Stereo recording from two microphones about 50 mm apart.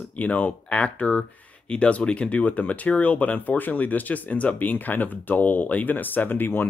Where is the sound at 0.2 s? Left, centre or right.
Left.